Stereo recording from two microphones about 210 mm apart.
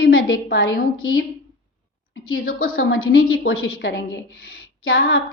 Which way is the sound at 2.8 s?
75° left (ahead or behind).